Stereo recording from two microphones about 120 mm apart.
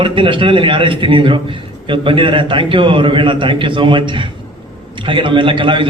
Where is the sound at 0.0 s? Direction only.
45° right (ahead or behind).